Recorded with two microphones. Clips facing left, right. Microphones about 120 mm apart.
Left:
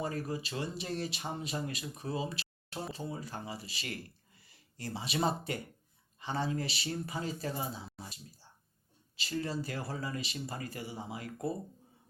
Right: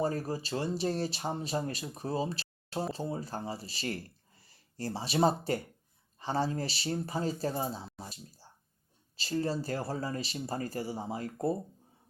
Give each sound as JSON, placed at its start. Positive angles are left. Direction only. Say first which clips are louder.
{"t": 0.0, "sound": "speech", "louder": "right 4 dB", "side_deg": -35}